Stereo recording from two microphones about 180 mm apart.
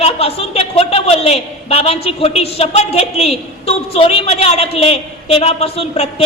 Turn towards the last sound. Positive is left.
turn(degrees=35)  # may be behind; listen again after turning